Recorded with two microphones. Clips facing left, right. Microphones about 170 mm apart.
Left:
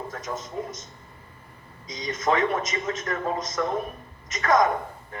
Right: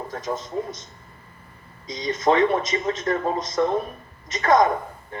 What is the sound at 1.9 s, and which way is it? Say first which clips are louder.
A woman's voice: right 4 dB; 30° right (ahead or behind).